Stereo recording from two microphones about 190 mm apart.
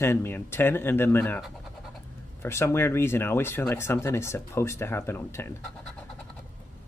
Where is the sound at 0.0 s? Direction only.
10° left (ahead or behind).